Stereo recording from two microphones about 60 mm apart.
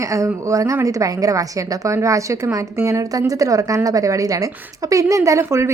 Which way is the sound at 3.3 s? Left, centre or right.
Right.